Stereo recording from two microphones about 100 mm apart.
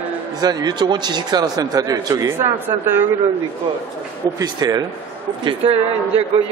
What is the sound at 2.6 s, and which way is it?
Speech, 20° right (ahead or behind).